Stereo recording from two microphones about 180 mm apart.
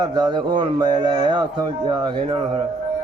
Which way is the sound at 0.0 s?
25° right (ahead or behind).